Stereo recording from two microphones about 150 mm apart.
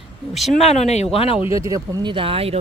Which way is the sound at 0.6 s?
45° left (ahead or behind).